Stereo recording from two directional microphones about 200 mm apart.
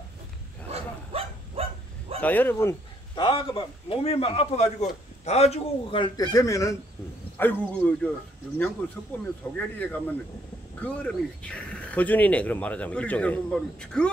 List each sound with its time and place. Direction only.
0.7 s bow-wow: 30° right (ahead or behind)
2.2 s speech: 10° left (ahead or behind)
3.2 s a man's voice: 25° left (ahead or behind); by 8.1 s 10° left (ahead or behind)
9.1 s speech: 10° left (ahead or behind)